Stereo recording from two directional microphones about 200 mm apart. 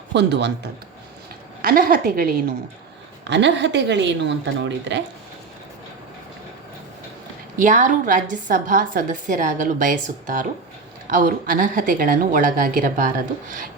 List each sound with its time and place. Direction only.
0.1 s a woman's voice: 60° right (ahead or behind)
1.6 s speech: 45° right (ahead or behind)
3.2 s a woman's voice: 60° right (ahead or behind)
7.5 s a woman's voice: 40° right (ahead or behind)